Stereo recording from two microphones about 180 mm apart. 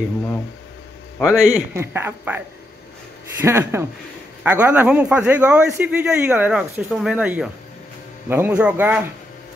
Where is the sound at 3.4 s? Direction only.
15° right (ahead or behind).